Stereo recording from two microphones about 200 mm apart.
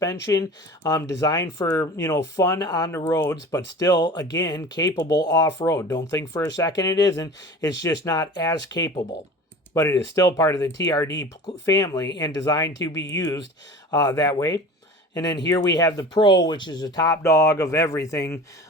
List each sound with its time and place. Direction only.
0.3 s speech: 15° left (ahead or behind)